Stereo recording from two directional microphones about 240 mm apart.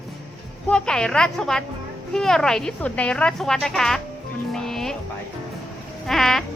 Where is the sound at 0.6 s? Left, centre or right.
Centre.